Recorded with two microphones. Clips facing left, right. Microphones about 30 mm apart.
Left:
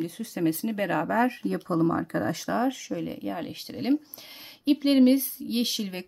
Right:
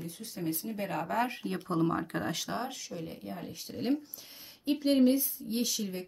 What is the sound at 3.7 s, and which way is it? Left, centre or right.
Speech, left.